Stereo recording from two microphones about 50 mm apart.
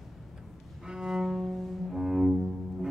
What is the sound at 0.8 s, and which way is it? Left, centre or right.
Cello, centre.